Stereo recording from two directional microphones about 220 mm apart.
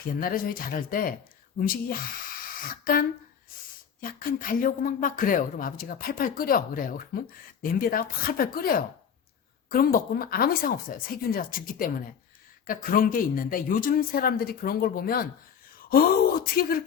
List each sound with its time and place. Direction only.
0.2 s speech: 40° left (ahead or behind)